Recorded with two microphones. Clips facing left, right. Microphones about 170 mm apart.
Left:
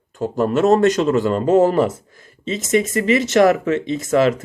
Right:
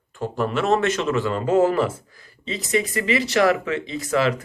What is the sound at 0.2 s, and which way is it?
Speech, 40° left (ahead or behind).